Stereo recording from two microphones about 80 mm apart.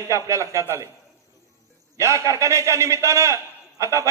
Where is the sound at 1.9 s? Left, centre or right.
Right.